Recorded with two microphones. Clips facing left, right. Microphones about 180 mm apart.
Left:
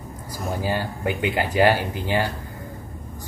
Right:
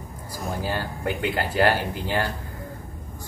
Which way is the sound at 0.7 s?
10° left (ahead or behind).